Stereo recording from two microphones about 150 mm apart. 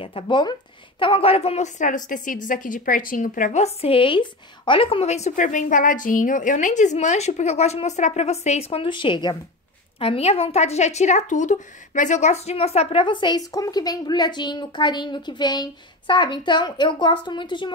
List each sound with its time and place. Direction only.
0.0 s a woman's voice: 35° left (ahead or behind)